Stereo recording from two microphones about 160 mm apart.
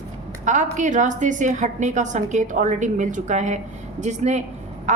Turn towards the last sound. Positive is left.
turn(degrees=-50)  # may be behind; listen again after turning